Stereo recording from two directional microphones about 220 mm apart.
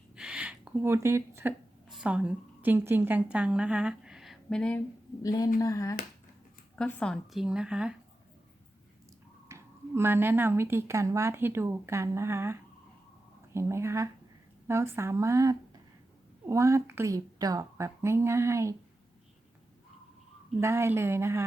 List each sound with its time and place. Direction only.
0.2 s a sound: 5° right (ahead or behind)
2.0 s a woman's voice: 5° right (ahead or behind)
5.2 s a woman's voice: 15° left (ahead or behind); by 7.9 s 5° right (ahead or behind)
9.5 s speech: 10° right (ahead or behind)
20.6 s speech: 10° right (ahead or behind)